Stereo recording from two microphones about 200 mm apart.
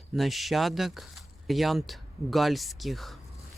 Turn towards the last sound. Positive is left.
turn(degrees=0)  # may be behind; listen again after turning